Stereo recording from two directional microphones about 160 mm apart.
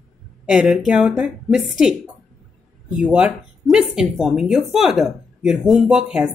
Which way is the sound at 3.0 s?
5° right (ahead or behind).